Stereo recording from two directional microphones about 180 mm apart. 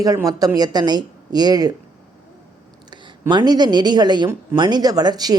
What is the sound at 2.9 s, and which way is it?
Speech, 25° right (ahead or behind).